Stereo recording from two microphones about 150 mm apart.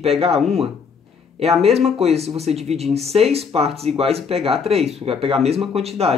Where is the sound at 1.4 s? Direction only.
45° right (ahead or behind).